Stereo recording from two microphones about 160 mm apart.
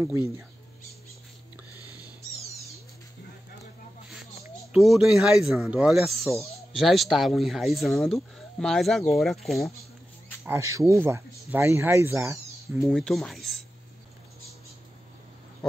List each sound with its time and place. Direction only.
4.7 s speech: centre (ahead or behind)
10.4 s speech: 15° right (ahead or behind)
12.7 s speech: centre (ahead or behind)